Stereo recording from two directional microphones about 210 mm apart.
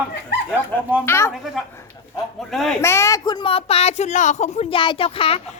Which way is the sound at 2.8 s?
15° left (ahead or behind).